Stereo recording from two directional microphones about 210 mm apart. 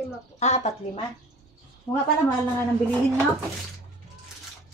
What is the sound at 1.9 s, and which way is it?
Speech, 20° left (ahead or behind).